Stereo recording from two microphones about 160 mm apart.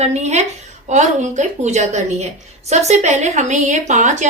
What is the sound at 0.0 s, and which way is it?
A woman's voice, 45° right (ahead or behind).